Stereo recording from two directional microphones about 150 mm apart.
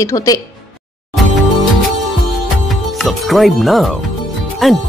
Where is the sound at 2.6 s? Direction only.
Centre (ahead or behind).